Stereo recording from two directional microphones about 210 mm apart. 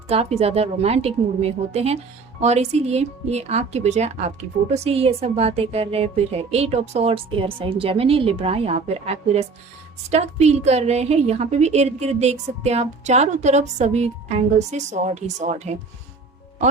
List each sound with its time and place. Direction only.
0.1 s a woman's voice: 30° right (ahead or behind)